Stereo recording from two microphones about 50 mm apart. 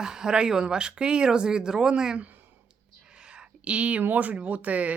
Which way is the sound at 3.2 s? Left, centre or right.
Centre.